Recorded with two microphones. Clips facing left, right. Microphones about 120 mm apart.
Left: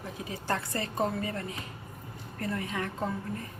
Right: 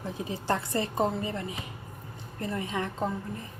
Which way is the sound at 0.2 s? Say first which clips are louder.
Right 3 dB; 25° right (ahead or behind).